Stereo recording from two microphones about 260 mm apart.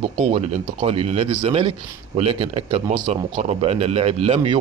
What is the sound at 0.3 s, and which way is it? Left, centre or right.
Speech, right.